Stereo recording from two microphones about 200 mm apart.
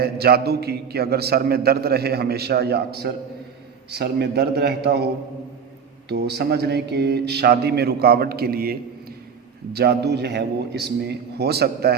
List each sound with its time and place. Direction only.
0.0 s a man's voice: 50° right (ahead or behind)
6.1 s a man's voice: 55° right (ahead or behind)